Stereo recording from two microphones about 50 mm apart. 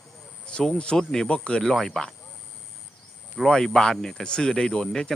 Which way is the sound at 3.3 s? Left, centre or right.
Centre.